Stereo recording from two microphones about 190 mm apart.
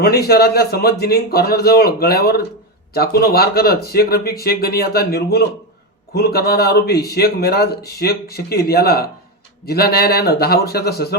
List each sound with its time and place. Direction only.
0.0 s speech: 55° left (ahead or behind)